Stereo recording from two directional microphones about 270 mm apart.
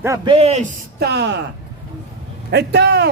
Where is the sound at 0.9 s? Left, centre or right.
Right.